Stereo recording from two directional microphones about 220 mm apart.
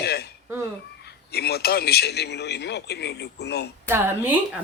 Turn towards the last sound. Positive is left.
turn(degrees=-10)  # may be behind; listen again after turning